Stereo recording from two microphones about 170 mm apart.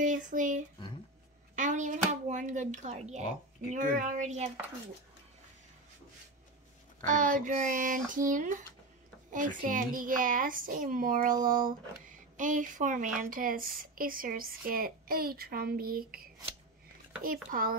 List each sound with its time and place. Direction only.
0.0 s a child's voice: 50° right (ahead or behind)
7.1 s a child's voice: 50° right (ahead or behind)
17.5 s speech: 55° right (ahead or behind)